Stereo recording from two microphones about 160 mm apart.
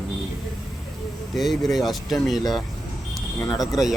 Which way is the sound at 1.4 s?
Centre (ahead or behind).